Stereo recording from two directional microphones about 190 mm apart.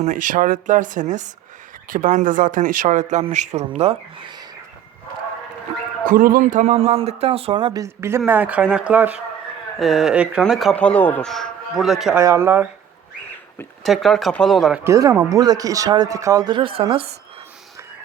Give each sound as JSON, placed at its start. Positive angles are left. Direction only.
{"t": 0.0, "sound": "speech", "side_deg": -45}
{"t": 6.1, "sound": "speech", "side_deg": -45}
{"t": 12.1, "sound": "speech", "side_deg": -15}
{"t": 13.8, "sound": "speech", "side_deg": 0}
{"t": 14.8, "sound": "speech", "side_deg": -15}